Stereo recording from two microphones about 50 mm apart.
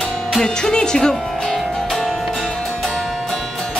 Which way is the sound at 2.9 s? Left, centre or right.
Centre.